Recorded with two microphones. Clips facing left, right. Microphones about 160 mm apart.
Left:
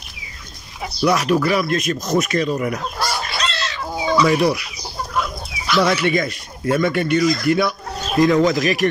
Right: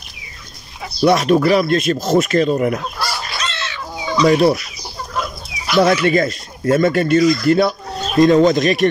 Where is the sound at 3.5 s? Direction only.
35° left (ahead or behind).